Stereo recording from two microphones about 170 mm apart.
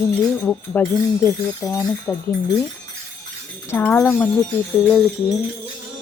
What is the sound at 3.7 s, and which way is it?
Speech, 10° left (ahead or behind).